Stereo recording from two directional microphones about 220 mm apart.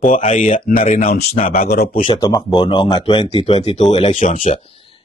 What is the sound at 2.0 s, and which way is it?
Speech, 20° left (ahead or behind).